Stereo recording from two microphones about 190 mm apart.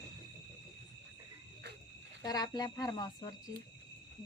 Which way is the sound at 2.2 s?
20° left (ahead or behind).